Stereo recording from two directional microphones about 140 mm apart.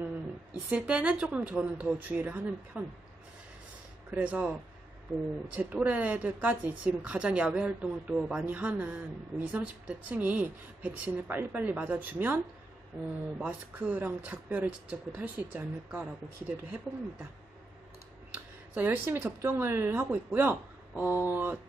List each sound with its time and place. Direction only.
0.0 s speech: 10° right (ahead or behind)
4.1 s speech: 10° right (ahead or behind)
5.6 s speech: 10° right (ahead or behind)
13.4 s speech: 10° right (ahead or behind)
18.8 s speech: 15° right (ahead or behind)